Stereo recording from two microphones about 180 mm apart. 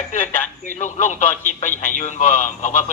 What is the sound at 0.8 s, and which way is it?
Speech, 45° left (ahead or behind).